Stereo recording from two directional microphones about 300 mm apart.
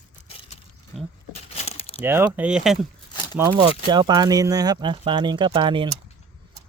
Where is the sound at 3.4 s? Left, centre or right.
Centre.